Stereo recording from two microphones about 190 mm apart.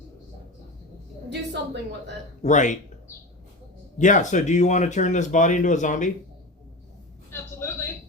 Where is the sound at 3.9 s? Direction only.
40° left (ahead or behind).